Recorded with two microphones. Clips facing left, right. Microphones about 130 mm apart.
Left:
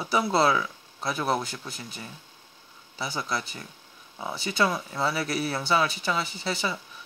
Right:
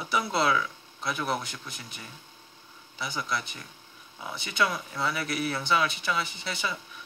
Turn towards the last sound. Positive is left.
turn(degrees=35)  # may be behind; listen again after turning